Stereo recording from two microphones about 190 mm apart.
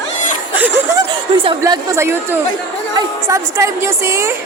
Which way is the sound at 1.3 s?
25° right (ahead or behind).